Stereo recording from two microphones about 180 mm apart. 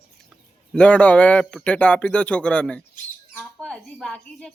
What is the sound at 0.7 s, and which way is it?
A man's voice, 5° left (ahead or behind).